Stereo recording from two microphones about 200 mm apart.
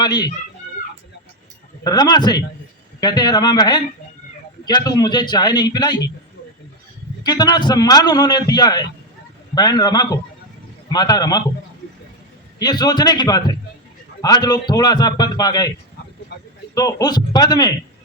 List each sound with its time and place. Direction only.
0.0 s speech: 20° left (ahead or behind)
1.8 s a man's voice: 20° left (ahead or behind)
7.3 s a man's voice: 20° left (ahead or behind)
12.5 s a man's voice: 20° left (ahead or behind)
16.3 s a sound: 55° left (ahead or behind)
16.7 s a man's voice: 20° left (ahead or behind)